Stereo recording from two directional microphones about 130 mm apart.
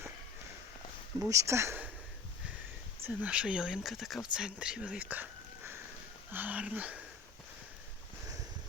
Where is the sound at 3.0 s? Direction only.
10° right (ahead or behind).